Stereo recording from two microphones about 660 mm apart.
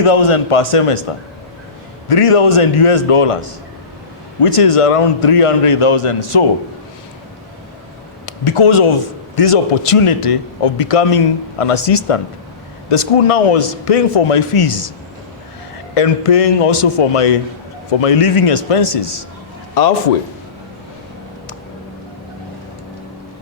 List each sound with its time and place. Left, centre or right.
0.0 s a man's voice: left
2.0 s a man's voice: left
8.3 s a man's voice: left
16.0 s a man's voice: left
19.7 s a man's voice: left